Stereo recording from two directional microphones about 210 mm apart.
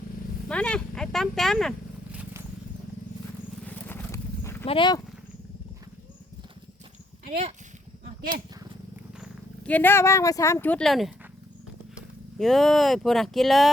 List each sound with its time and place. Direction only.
0.4 s a sound: 5° left (ahead or behind)
3.7 s horse: 10° left (ahead or behind)
4.6 s speech: 25° left (ahead or behind)
9.6 s speech: 10° left (ahead or behind)